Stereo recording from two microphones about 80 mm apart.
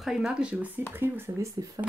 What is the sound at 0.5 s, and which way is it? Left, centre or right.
Speech, right.